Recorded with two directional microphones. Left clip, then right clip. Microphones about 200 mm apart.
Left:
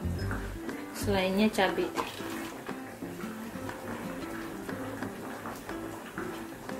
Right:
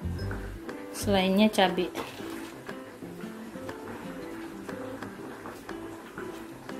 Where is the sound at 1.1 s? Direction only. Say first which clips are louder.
Right 4 dB; 45° right (ahead or behind).